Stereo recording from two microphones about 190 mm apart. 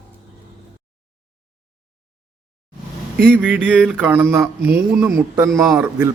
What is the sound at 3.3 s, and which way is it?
A man's voice, 10° right (ahead or behind).